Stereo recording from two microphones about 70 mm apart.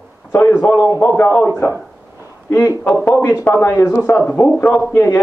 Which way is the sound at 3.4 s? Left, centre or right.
Left.